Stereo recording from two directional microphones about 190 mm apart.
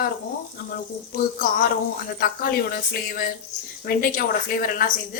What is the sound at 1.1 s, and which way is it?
Speech, 50° left (ahead or behind).